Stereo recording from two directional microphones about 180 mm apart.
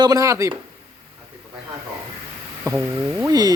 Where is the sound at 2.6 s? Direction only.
10° right (ahead or behind).